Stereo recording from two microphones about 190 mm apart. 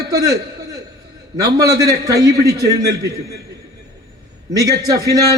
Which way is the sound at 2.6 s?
60° right (ahead or behind).